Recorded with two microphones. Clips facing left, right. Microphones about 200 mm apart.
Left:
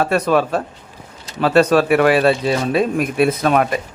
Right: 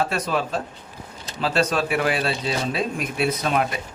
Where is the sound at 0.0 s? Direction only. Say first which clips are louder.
Left 8 dB; 60° left (ahead or behind).